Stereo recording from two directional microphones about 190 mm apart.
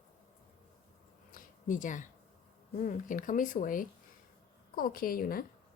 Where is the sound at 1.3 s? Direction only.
45° left (ahead or behind).